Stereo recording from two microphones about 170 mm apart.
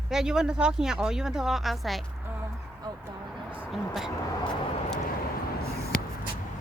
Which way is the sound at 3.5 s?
5° right (ahead or behind).